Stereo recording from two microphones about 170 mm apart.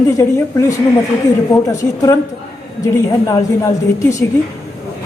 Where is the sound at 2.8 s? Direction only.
20° left (ahead or behind).